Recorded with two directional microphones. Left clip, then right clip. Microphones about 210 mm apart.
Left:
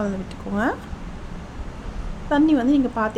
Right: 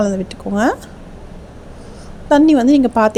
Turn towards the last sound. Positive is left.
turn(degrees=-35)  # may be behind; listen again after turning